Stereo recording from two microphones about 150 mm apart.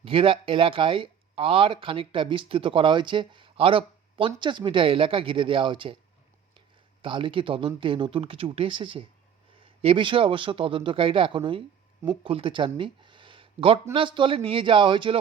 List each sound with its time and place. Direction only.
0.0 s speech: 35° right (ahead or behind)
7.0 s speech: 35° right (ahead or behind)